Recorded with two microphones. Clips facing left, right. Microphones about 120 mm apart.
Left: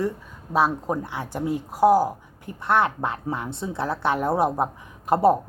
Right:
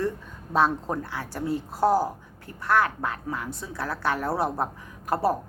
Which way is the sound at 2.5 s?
25° left (ahead or behind).